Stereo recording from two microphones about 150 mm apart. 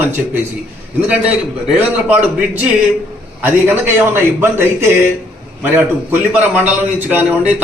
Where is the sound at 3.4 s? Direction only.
15° right (ahead or behind).